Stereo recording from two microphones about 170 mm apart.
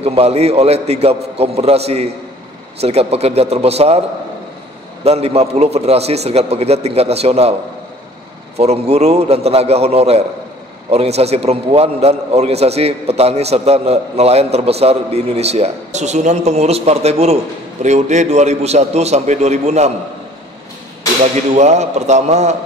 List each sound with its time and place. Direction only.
0.0 s a man's voice: 35° right (ahead or behind)
5.0 s a man's voice: 35° right (ahead or behind)
8.5 s a man's voice: 40° right (ahead or behind)
21.2 s a man's voice: 40° right (ahead or behind)